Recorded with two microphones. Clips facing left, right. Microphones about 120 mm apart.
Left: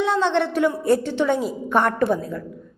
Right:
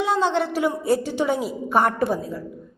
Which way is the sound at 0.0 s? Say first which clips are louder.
Left 1 dB; 10° right (ahead or behind).